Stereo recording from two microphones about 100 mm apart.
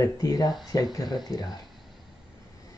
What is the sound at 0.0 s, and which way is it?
Speech, 35° left (ahead or behind).